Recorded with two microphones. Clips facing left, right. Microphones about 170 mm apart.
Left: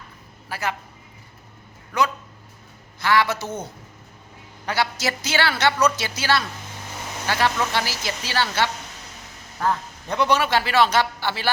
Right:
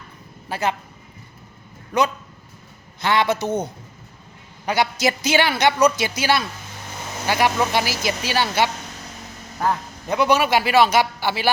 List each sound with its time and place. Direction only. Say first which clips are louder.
0.4 s a man's voice: right 5 dB; 20° right (ahead or behind)
1.9 s a man's voice: right 3 dB; 20° right (ahead or behind)